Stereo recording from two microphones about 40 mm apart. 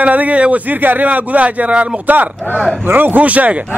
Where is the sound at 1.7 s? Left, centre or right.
Right.